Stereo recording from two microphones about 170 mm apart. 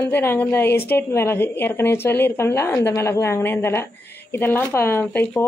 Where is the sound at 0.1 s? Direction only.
10° left (ahead or behind).